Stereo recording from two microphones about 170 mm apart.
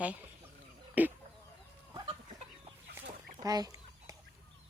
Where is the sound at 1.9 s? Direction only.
30° right (ahead or behind).